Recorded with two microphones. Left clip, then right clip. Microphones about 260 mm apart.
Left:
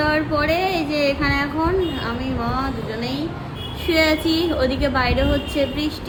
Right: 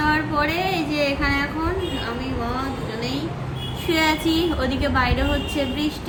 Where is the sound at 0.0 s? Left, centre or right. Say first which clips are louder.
Left 1 dB; centre.